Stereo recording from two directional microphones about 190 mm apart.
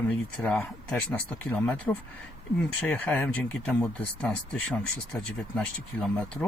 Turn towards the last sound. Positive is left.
turn(degrees=5)  # may be behind; listen again after turning